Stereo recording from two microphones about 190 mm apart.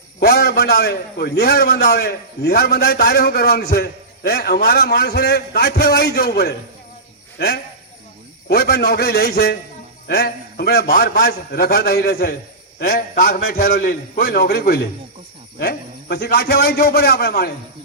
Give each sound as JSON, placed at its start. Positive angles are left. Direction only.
{"t": 0.2, "sound": "a man's voice", "side_deg": 55}